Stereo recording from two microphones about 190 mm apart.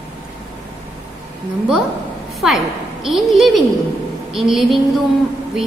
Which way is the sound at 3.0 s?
Centre (ahead or behind).